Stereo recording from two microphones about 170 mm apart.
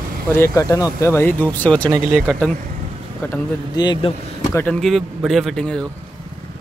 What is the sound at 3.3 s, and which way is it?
Speech, 25° left (ahead or behind).